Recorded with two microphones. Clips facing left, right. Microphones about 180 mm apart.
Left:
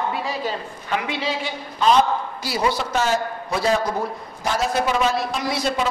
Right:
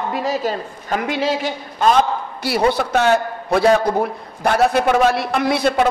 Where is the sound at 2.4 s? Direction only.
60° right (ahead or behind).